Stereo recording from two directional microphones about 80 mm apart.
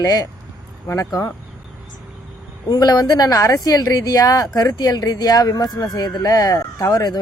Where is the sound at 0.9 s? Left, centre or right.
Left.